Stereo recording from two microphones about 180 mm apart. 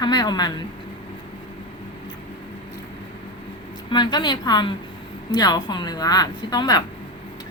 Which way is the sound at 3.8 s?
25° left (ahead or behind).